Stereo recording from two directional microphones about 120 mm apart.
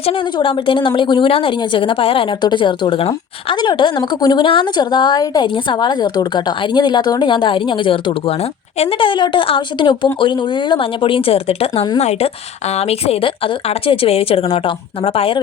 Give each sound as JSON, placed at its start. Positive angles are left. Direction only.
{"t": 0.3, "sound": "a woman's voice", "side_deg": 45}